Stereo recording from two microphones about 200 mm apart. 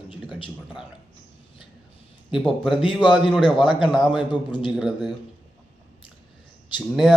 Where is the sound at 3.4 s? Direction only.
25° left (ahead or behind).